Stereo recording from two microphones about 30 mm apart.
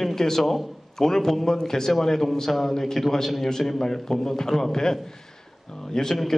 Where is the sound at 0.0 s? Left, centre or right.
Centre.